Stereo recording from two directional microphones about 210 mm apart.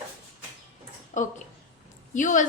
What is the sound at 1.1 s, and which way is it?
A woman's voice, 35° left (ahead or behind).